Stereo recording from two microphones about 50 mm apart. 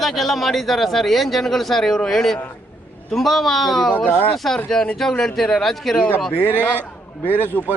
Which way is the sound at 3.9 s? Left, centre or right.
Left.